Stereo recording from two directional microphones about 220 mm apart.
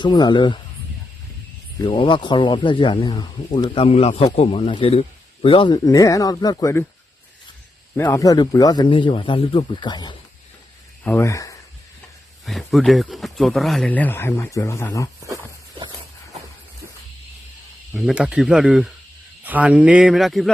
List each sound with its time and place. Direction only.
0.0 s a man's voice: 20° left (ahead or behind)
1.8 s a man's voice: 20° left (ahead or behind)
7.9 s a man's voice: 10° left (ahead or behind)
12.5 s speech: centre (ahead or behind)
17.9 s speech: 5° right (ahead or behind)